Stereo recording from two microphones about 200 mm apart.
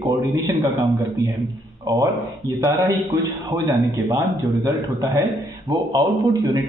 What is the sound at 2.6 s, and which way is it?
A man's voice, 15° right (ahead or behind).